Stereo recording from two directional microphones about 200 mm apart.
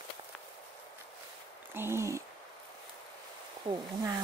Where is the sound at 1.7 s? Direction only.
10° right (ahead or behind).